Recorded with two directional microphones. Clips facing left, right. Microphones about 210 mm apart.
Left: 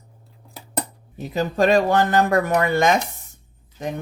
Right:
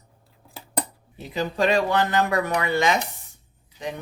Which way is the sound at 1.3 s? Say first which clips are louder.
Left 4 dB; 45° left (ahead or behind).